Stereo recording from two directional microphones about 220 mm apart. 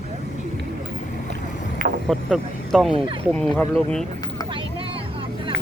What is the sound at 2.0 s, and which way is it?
Speech, centre (ahead or behind).